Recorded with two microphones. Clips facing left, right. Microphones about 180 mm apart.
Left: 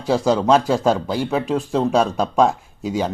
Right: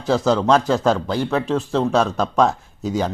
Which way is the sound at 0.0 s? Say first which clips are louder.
Even; 10° left (ahead or behind).